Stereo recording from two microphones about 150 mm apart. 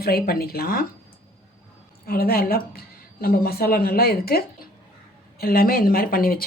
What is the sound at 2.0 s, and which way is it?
A woman's voice, 85° left.